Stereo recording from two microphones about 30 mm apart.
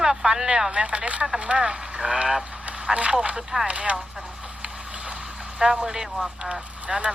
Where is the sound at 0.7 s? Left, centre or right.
Right.